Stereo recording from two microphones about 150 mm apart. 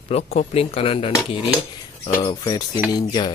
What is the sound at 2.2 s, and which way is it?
Speech, 25° left (ahead or behind).